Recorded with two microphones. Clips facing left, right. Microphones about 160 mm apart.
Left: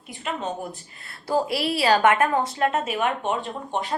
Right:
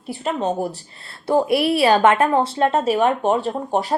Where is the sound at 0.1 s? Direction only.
35° right (ahead or behind).